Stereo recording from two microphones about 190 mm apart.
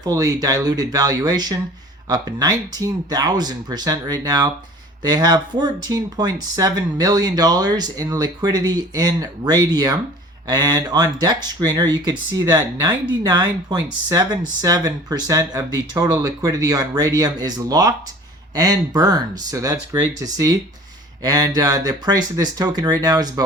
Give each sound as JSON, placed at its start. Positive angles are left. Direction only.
{"t": 0.0, "sound": "speech", "side_deg": -20}